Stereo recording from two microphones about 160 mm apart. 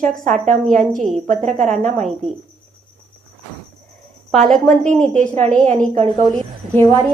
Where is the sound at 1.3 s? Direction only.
50° right (ahead or behind).